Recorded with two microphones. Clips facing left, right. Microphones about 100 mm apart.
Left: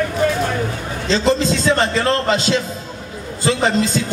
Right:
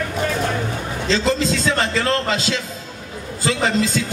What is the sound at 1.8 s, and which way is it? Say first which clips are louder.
A man's voice: left 3 dB; 30° left (ahead or behind).